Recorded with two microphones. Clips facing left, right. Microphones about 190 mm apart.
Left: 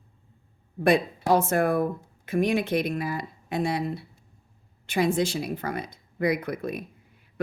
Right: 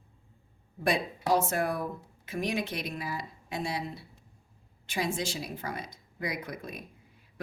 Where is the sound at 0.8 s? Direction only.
60° left (ahead or behind).